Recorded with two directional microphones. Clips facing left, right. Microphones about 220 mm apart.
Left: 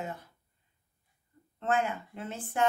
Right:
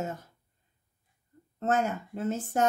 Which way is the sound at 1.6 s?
45° right (ahead or behind).